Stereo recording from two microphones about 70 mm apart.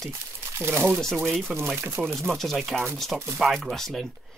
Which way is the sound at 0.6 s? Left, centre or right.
Right.